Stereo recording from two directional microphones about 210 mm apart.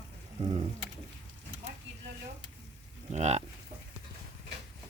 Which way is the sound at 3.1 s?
30° right (ahead or behind).